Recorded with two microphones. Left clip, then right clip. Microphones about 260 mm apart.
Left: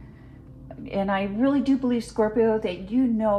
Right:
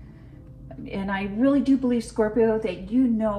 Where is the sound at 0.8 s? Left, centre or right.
Left.